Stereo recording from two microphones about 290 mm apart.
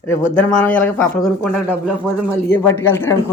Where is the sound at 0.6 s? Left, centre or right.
Centre.